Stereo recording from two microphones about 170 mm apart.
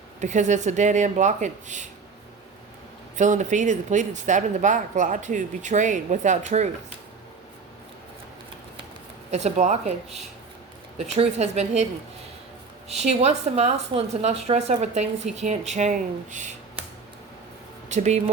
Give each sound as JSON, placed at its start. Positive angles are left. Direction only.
{"t": 0.2, "sound": "speech", "side_deg": -45}
{"t": 3.2, "sound": "speech", "side_deg": -45}
{"t": 9.3, "sound": "a woman's voice", "side_deg": -40}
{"t": 10.9, "sound": "a woman's voice", "side_deg": -40}
{"t": 12.9, "sound": "a woman's voice", "side_deg": -40}
{"t": 17.8, "sound": "speech", "side_deg": -45}